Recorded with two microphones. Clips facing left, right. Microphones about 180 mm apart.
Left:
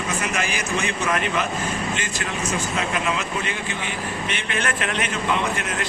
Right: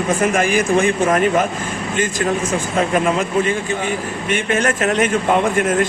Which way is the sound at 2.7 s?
50° right (ahead or behind).